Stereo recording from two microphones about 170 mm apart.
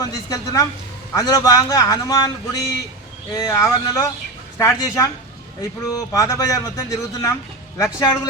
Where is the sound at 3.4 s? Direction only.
20° left (ahead or behind).